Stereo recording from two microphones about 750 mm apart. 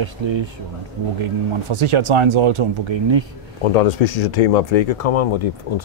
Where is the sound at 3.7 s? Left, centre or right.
Left.